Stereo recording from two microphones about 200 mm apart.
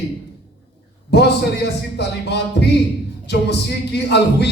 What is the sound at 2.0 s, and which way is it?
Speech, 55° left (ahead or behind).